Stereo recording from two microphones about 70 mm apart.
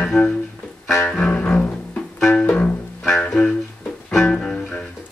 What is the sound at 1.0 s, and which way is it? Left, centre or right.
Music, centre.